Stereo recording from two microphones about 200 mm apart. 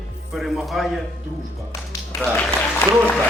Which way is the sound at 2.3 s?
10° left (ahead or behind).